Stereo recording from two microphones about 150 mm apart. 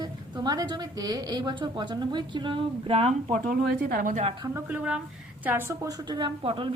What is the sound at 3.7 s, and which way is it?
Speech, 70° right (ahead or behind).